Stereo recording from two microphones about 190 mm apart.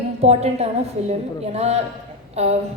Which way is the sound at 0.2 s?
35° right (ahead or behind).